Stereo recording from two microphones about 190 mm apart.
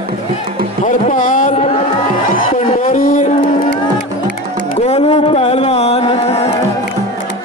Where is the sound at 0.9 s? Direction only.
40° left (ahead or behind).